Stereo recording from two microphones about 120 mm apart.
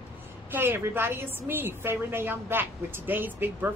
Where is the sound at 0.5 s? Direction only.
20° right (ahead or behind).